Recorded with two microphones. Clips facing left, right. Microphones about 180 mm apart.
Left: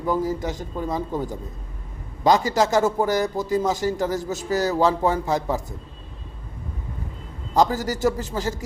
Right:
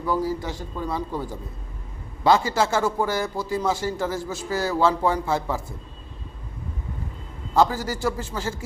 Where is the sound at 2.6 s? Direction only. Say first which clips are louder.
Left 3 dB; 40° left (ahead or behind).